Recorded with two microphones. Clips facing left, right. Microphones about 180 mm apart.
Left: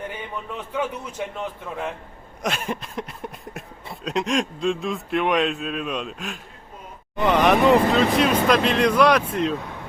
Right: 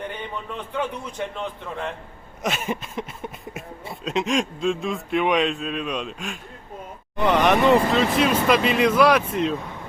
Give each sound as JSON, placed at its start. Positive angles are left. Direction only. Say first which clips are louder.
{"t": 0.0, "sound": "a man's voice", "louder": "right 1 dB", "side_deg": 5}